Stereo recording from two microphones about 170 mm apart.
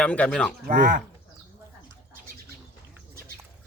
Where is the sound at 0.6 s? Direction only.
50° right (ahead or behind).